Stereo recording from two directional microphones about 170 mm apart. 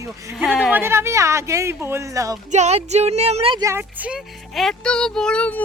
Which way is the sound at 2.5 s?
40° right (ahead or behind).